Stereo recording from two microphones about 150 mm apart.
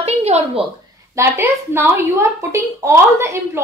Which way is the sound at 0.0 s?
45° right (ahead or behind).